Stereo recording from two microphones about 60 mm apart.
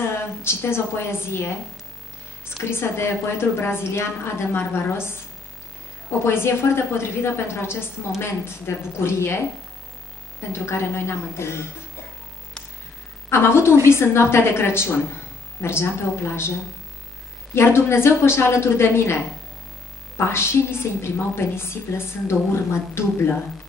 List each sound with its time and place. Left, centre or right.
0.1 s a woman's voice: left
6.2 s a woman's voice: left
10.5 s a woman's voice: left
13.3 s a woman's voice: left
17.6 s a woman's voice: left
20.2 s a woman's voice: left